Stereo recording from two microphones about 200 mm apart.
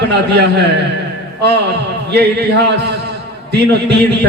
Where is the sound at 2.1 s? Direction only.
60° right (ahead or behind).